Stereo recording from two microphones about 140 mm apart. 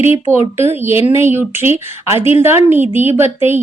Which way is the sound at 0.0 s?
20° right (ahead or behind).